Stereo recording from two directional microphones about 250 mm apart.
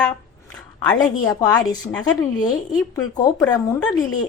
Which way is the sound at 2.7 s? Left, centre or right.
Centre.